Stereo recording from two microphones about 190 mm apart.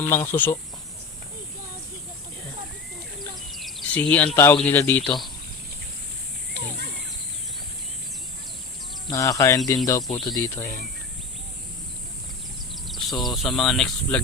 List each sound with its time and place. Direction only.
0.1 s speech: 10° left (ahead or behind)
3.2 s bird: centre (ahead or behind)
4.4 s speech: 15° left (ahead or behind)
9.0 s speech: 15° left (ahead or behind)
12.9 s speech: centre (ahead or behind)